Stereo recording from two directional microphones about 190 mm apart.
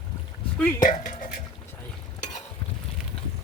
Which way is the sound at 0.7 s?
45° left (ahead or behind).